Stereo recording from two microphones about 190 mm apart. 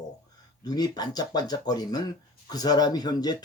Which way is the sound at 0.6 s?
20° left (ahead or behind).